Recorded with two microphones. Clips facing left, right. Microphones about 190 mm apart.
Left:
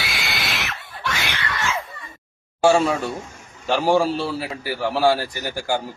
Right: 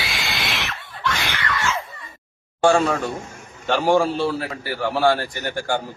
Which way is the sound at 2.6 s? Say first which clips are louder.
Even; 5° left (ahead or behind).